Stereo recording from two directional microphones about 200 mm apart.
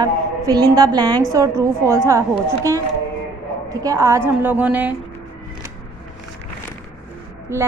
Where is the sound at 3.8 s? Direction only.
15° right (ahead or behind).